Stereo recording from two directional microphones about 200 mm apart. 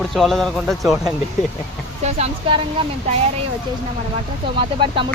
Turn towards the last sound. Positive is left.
turn(degrees=-25)  # may be behind; listen again after turning